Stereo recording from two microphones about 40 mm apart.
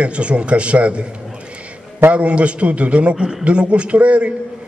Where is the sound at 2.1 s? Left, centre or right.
Right.